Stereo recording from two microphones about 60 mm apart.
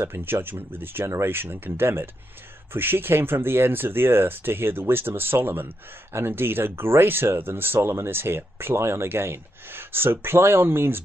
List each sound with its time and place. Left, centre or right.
0.0 s speech: right